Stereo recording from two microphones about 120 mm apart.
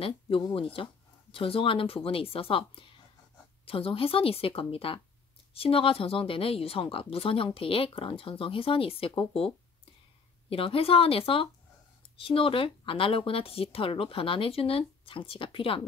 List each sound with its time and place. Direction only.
0.0 s speech: 50° left (ahead or behind)
10.5 s speech: 50° left (ahead or behind)